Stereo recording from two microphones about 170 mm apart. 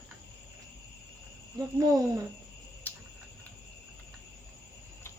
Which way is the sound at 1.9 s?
20° right (ahead or behind).